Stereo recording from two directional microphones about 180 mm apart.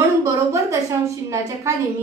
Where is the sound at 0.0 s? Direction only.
15° right (ahead or behind).